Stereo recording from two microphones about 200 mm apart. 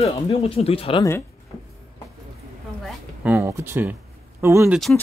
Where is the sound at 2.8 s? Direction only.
10° right (ahead or behind).